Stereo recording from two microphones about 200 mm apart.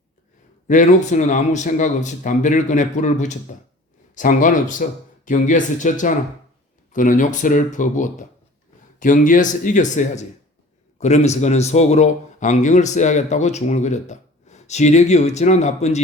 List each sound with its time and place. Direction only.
0.7 s a man's voice: 40° left (ahead or behind)